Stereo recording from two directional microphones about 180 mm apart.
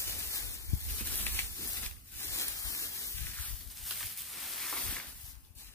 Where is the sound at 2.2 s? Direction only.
15° left (ahead or behind).